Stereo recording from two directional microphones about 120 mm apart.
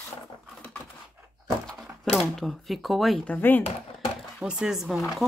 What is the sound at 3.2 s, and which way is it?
Speech, 15° left (ahead or behind).